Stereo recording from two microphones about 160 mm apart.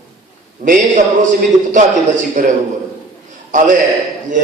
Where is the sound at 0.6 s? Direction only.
50° right (ahead or behind).